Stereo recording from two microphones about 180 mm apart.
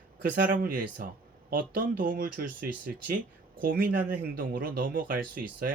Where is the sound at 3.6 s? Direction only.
55° right (ahead or behind).